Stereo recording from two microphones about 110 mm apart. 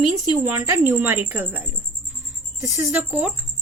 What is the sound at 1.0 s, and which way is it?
Speech, 15° right (ahead or behind).